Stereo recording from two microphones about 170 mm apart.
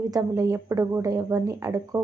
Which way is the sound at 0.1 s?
20° right (ahead or behind).